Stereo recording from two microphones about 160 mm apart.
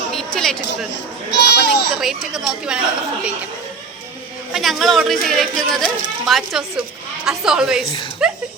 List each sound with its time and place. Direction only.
0.1 s a sound: centre (ahead or behind)
1.3 s speech: 90° left
2.0 s speech: 5° right (ahead or behind)
4.5 s speech: centre (ahead or behind)